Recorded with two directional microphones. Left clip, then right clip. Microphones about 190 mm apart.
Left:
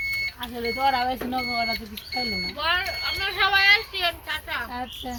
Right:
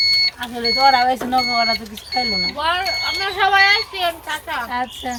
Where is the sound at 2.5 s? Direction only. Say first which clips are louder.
Right 5 dB; 30° right (ahead or behind).